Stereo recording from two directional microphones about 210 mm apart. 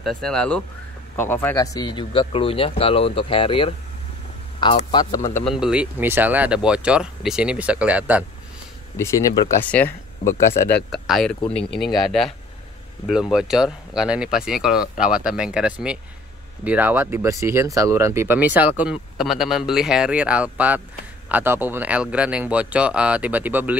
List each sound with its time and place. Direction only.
0.0 s speech: 5° left (ahead or behind)
5.4 s speech: centre (ahead or behind)
8.9 s speech: 15° left (ahead or behind); by 23.8 s 10° right (ahead or behind)